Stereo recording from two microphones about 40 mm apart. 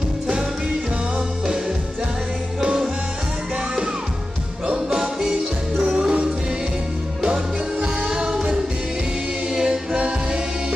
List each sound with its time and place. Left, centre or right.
2.6 s music: centre
4.9 s music: centre
7.3 s music: right
9.5 s music: right